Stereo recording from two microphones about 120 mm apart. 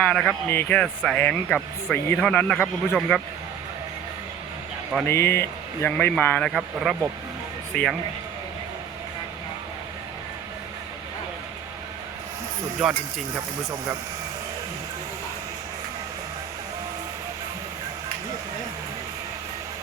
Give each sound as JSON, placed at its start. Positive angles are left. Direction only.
{"t": 0.0, "sound": "speech", "side_deg": 5}
{"t": 0.4, "sound": "speech", "side_deg": 15}
{"t": 5.0, "sound": "speech", "side_deg": 20}
{"t": 6.5, "sound": "a man's voice", "side_deg": 0}
{"t": 13.3, "sound": "speech", "side_deg": -25}